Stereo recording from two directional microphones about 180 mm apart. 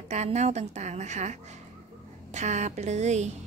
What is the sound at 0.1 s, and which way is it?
A woman's voice, 40° right (ahead or behind).